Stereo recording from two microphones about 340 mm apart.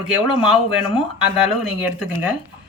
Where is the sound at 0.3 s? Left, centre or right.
Centre.